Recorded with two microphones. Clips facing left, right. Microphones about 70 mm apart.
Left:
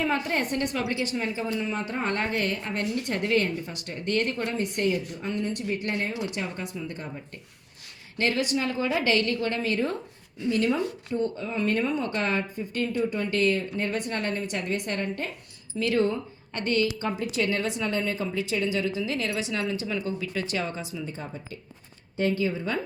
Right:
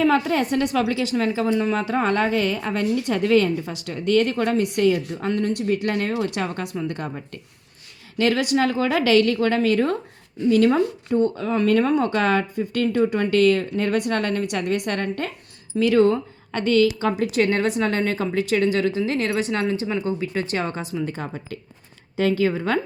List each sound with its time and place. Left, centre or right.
0.0 s speech: right
6.2 s speech: right
8.2 s speech: right
16.7 s speech: right
22.1 s speech: right